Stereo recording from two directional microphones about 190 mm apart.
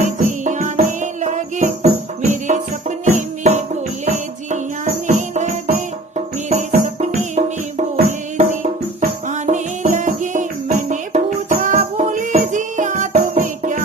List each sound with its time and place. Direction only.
0.0 s music: 40° right (ahead or behind)
5.0 s music: 40° right (ahead or behind)